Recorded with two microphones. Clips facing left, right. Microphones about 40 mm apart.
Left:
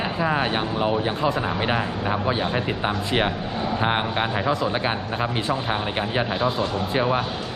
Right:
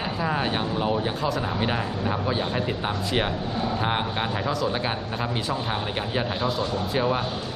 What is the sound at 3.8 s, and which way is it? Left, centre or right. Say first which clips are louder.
Speech: left 3 dB; left.